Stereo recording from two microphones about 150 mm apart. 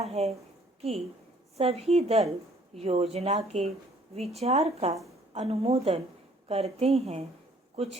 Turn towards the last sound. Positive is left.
turn(degrees=-40)  # may be behind; listen again after turning